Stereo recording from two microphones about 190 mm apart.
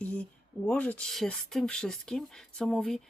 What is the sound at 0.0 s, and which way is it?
Speech, 10° left (ahead or behind).